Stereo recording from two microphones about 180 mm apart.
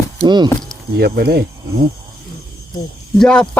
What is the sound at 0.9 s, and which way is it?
Speech, 60° right (ahead or behind).